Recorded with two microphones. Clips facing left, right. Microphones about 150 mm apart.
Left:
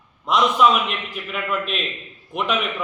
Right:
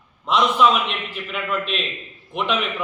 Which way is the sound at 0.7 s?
Centre (ahead or behind).